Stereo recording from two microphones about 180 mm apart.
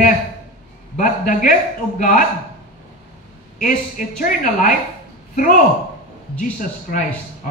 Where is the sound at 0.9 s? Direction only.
45° left (ahead or behind).